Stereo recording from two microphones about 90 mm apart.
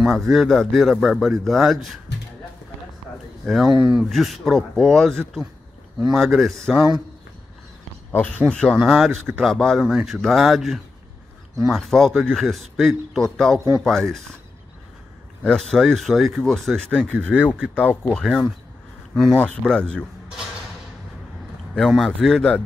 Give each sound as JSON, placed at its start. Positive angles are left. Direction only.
{"t": 0.0, "sound": "speech", "side_deg": 0}
{"t": 3.4, "sound": "speech", "side_deg": 0}
{"t": 3.7, "sound": "speech", "side_deg": -10}
{"t": 4.1, "sound": "speech", "side_deg": 0}
{"t": 8.1, "sound": "speech", "side_deg": 20}
{"t": 8.5, "sound": "speech", "side_deg": 5}
{"t": 15.4, "sound": "a man's voice", "side_deg": 5}
{"t": 21.7, "sound": "a man's voice", "side_deg": 5}